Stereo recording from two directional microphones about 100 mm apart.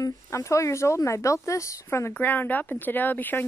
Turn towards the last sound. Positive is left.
turn(degrees=20)  # may be behind; listen again after turning